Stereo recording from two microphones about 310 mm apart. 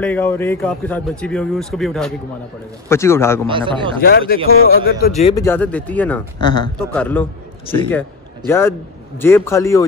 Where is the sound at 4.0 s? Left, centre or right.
Left.